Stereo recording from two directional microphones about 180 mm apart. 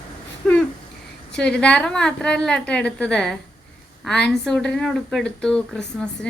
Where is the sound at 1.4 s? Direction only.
5° left (ahead or behind).